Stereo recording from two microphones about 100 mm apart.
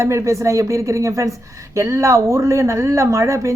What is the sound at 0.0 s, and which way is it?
Speech, 30° right (ahead or behind).